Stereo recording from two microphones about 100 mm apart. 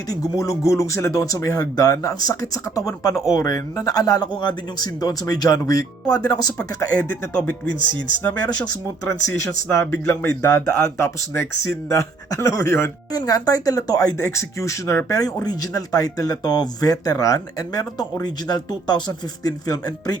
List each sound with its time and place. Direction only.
0.1 s speech: 35° left (ahead or behind)
7.3 s speech: 10° left (ahead or behind)
8.4 s speech: 45° left (ahead or behind)
9.0 s speech: 30° left (ahead or behind)
13.1 s speech: 40° left (ahead or behind)